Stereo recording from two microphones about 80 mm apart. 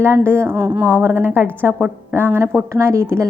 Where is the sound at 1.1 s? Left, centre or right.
Right.